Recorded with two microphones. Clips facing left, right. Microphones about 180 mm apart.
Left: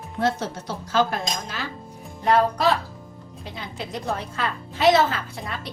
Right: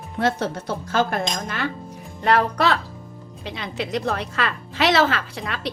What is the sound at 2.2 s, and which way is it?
A woman's voice, 70° right (ahead or behind).